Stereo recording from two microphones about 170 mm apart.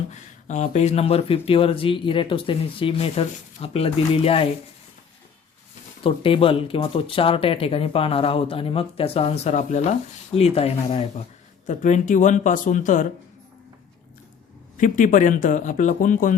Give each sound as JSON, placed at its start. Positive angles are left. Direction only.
{"t": 0.1, "sound": "speech", "side_deg": 45}
{"t": 6.0, "sound": "speech", "side_deg": 30}
{"t": 11.6, "sound": "a man's voice", "side_deg": 45}
{"t": 14.8, "sound": "a man's voice", "side_deg": 50}